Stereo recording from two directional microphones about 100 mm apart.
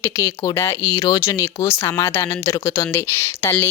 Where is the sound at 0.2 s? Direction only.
25° left (ahead or behind).